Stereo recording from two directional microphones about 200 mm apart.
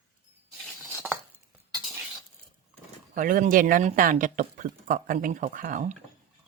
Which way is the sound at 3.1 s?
45° right (ahead or behind).